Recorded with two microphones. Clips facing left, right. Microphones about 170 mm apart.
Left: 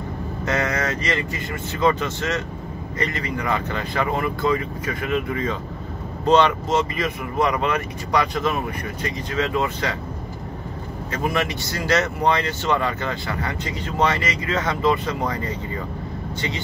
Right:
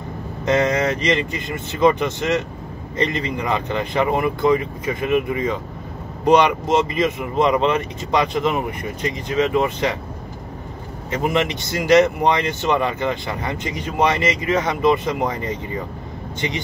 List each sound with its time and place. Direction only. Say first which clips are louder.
0.5 s speech: right 6 dB; 20° right (ahead or behind)
11.1 s speech: right 4 dB; 20° right (ahead or behind)